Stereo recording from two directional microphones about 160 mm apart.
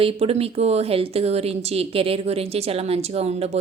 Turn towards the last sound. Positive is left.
turn(degrees=-40)  # may be behind; listen again after turning